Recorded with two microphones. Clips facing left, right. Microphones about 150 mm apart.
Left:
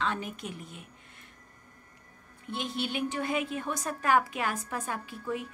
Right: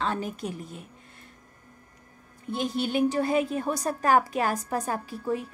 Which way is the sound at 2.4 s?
40° right (ahead or behind).